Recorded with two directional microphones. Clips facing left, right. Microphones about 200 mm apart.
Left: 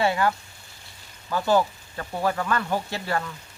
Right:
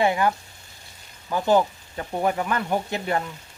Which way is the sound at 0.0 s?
15° right (ahead or behind).